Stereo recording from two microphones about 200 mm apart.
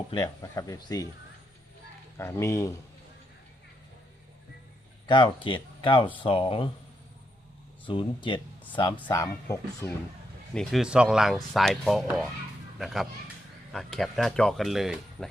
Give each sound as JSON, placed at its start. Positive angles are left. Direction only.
{"t": 0.1, "sound": "speech", "side_deg": 20}
{"t": 2.1, "sound": "speech", "side_deg": 15}
{"t": 5.0, "sound": "speech", "side_deg": 25}
{"t": 7.9, "sound": "speech", "side_deg": 25}
{"t": 9.0, "sound": "speech", "side_deg": 10}
{"t": 10.5, "sound": "speech", "side_deg": 0}